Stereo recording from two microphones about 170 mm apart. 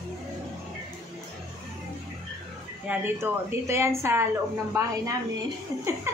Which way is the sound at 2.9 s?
15° right (ahead or behind).